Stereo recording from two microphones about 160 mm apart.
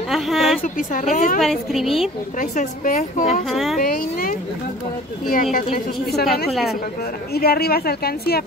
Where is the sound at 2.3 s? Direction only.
50° left (ahead or behind).